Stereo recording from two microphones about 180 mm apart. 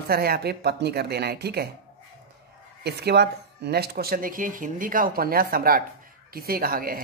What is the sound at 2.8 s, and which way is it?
Speech, 65° right (ahead or behind).